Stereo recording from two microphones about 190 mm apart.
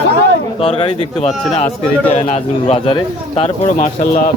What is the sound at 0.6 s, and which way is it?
Speech, 35° left (ahead or behind).